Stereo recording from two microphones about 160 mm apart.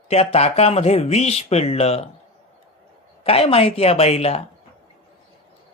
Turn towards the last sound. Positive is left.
turn(degrees=40)  # may be behind; listen again after turning